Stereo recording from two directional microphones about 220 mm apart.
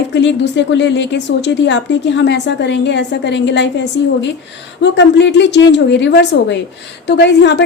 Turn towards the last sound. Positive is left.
turn(degrees=50)  # may be behind; listen again after turning